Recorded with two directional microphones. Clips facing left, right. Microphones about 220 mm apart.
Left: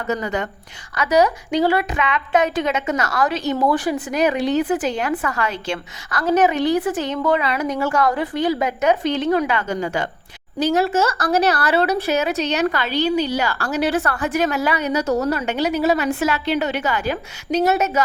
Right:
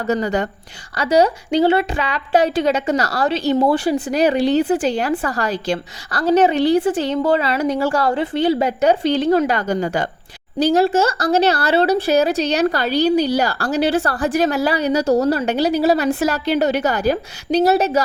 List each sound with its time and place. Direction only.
0.1 s a woman's voice: 35° right (ahead or behind)